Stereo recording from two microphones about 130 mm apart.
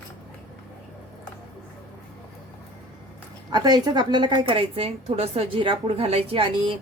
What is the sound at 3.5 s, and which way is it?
A woman's voice, 35° right (ahead or behind).